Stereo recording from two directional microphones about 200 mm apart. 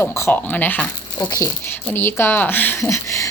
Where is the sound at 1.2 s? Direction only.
20° left (ahead or behind).